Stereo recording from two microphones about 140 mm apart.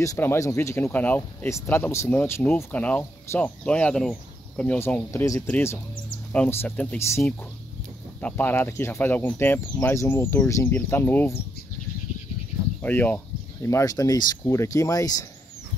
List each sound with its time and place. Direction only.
0.0 s speech: 20° left (ahead or behind)
12.8 s speech: 10° left (ahead or behind)